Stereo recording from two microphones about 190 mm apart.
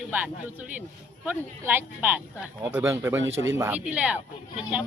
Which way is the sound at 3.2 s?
85° right.